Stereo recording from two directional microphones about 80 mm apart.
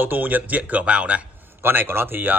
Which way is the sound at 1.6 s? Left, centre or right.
Right.